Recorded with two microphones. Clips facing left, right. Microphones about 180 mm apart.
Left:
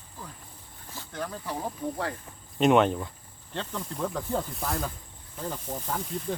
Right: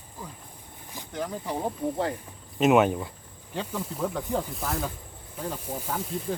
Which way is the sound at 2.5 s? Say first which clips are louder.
Right 1 dB; 5° right (ahead or behind).